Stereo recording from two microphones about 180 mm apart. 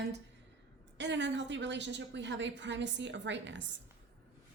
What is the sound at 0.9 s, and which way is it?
A woman's voice, 75° right (ahead or behind).